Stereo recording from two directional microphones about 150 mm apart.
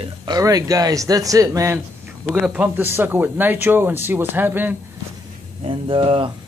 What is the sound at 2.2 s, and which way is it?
Speech, 5° right (ahead or behind).